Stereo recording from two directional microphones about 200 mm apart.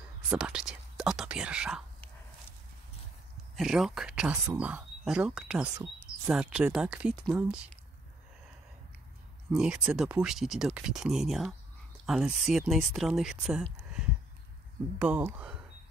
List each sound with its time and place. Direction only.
0.3 s speech: 5° right (ahead or behind)
3.5 s speech: centre (ahead or behind)
9.5 s speech: 5° right (ahead or behind)
15.0 s speech: 10° right (ahead or behind)